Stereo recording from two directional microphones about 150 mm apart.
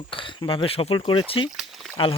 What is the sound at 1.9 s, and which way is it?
Speech, 35° left (ahead or behind).